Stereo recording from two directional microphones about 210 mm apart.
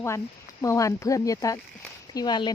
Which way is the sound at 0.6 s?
15° left (ahead or behind).